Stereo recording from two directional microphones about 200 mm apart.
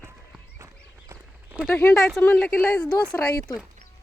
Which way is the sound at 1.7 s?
10° left (ahead or behind).